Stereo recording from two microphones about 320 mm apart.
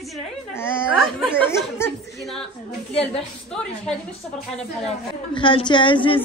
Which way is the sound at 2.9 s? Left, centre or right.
Centre.